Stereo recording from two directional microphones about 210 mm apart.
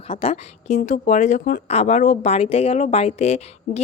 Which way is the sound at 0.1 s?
30° left (ahead or behind).